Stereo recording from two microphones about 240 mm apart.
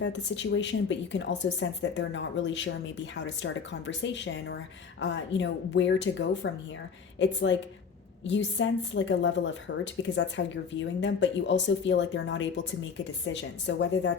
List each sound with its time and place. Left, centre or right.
0.0 s a woman's voice: left
8.2 s a woman's voice: left